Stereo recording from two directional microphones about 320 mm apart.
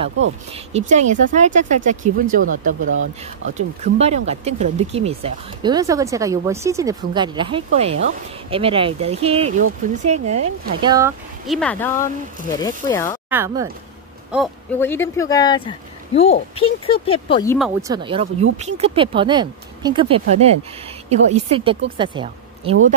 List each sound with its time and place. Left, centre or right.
0.5 s speech: right; by 13.2 s centre
13.3 s speech: centre
14.3 s speech: centre
17.6 s speech: centre
17.9 s speech: centre